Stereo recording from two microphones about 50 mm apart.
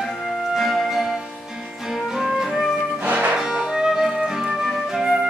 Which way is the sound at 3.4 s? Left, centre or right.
Centre.